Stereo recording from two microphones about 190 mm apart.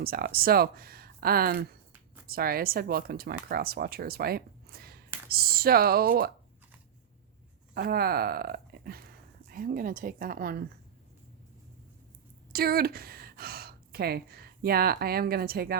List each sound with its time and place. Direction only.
0.0 s speech: 50° right (ahead or behind)
7.7 s speech: 55° right (ahead or behind)
12.5 s speech: 55° right (ahead or behind)